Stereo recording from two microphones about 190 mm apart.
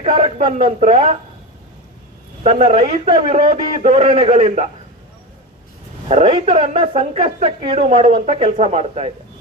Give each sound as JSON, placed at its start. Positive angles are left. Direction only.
{"t": 0.0, "sound": "a man's voice", "side_deg": -35}
{"t": 2.4, "sound": "a man's voice", "side_deg": -35}
{"t": 6.1, "sound": "speech", "side_deg": -35}